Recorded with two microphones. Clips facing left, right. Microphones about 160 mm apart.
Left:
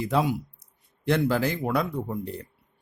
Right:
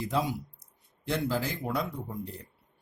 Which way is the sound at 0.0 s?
70° left (ahead or behind).